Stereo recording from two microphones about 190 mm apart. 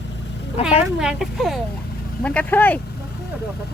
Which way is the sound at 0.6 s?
30° left (ahead or behind).